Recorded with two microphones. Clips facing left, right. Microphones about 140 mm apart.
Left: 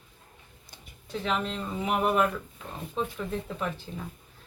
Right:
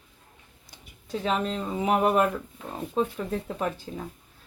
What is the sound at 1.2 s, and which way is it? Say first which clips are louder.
Speech: right 3 dB; 40° right (ahead or behind).